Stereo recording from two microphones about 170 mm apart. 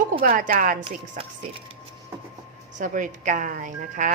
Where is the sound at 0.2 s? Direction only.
55° right (ahead or behind).